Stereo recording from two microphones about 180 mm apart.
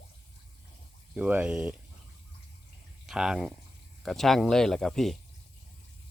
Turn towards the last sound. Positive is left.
turn(degrees=0)  # may be behind; listen again after turning